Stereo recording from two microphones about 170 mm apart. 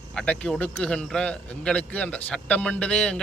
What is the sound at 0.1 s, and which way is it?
Speech, 5° left (ahead or behind).